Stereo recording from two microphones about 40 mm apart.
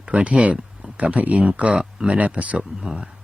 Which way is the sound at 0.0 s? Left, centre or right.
Right.